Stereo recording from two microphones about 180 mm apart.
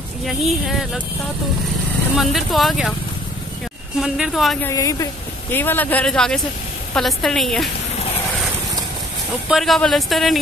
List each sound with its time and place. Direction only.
0.2 s speech: centre (ahead or behind)
2.1 s speech: centre (ahead or behind)
4.0 s speech: centre (ahead or behind)
4.6 s speech: 20° left (ahead or behind); by 7.7 s centre (ahead or behind)
9.5 s speech: centre (ahead or behind)